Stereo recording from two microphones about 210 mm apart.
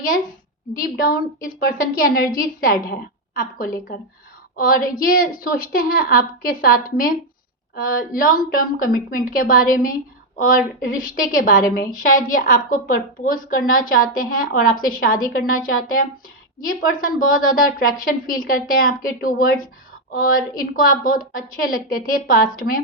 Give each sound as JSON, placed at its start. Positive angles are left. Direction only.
{"t": 0.8, "sound": "a woman's voice", "side_deg": 45}